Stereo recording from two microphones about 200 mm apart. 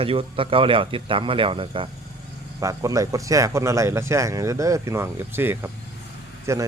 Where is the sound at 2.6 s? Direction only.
15° right (ahead or behind).